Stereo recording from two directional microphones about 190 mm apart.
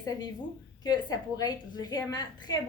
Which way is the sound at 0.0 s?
20° left (ahead or behind).